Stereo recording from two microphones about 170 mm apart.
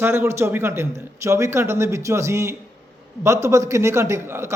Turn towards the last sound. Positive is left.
turn(degrees=-15)  # may be behind; listen again after turning